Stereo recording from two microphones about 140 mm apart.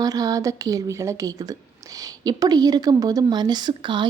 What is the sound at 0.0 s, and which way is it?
A woman's voice, 25° right (ahead or behind).